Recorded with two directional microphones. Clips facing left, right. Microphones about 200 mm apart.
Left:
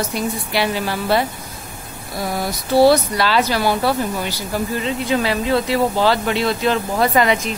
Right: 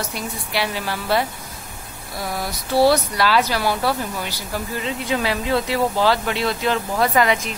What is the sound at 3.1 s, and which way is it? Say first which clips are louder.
Speech: left 1 dB; 5° right (ahead or behind).